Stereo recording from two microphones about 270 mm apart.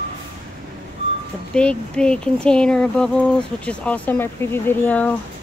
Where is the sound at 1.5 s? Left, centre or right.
Centre.